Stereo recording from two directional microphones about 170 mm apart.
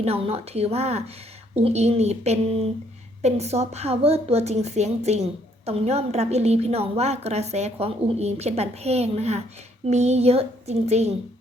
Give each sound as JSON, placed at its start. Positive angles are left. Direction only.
{"t": 0.0, "sound": "a woman's voice", "side_deg": -35}